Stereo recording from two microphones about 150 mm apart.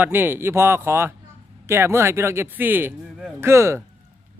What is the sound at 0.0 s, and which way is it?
Speech, 15° right (ahead or behind).